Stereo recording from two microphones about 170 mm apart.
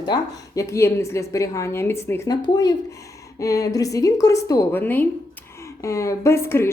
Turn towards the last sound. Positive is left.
turn(degrees=15)  # may be behind; listen again after turning